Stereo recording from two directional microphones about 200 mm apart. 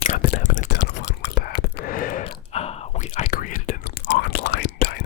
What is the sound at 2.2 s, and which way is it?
Whispering, 30° left (ahead or behind).